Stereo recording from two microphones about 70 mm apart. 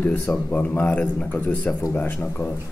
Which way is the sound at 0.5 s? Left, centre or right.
Left.